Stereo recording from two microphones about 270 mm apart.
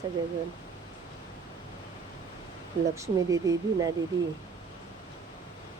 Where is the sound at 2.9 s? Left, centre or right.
Centre.